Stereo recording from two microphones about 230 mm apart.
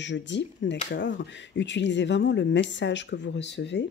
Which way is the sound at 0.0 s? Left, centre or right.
Left.